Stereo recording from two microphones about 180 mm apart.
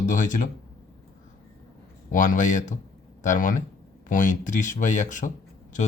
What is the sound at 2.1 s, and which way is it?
Speech, 45° left (ahead or behind).